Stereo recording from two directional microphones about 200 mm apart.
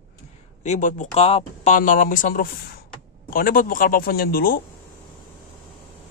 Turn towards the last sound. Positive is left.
turn(degrees=45)  # may be behind; listen again after turning